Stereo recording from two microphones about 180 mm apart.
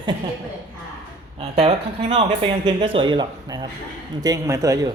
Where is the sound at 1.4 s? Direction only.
35° right (ahead or behind); by 4.9 s 20° right (ahead or behind).